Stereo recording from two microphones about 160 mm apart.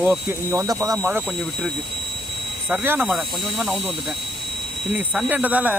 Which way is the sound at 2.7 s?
15° right (ahead or behind).